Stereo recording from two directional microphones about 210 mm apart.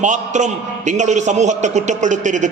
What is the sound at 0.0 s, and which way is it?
A man's voice, 35° right (ahead or behind).